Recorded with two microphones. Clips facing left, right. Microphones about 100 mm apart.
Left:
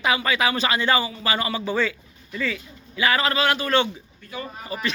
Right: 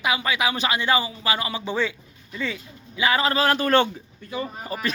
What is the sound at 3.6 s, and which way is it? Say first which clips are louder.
Speech: right 2 dB; 50° right (ahead or behind).